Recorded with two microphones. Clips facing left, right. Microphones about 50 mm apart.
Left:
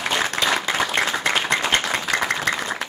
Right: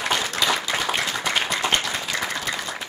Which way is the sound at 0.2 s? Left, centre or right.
Left.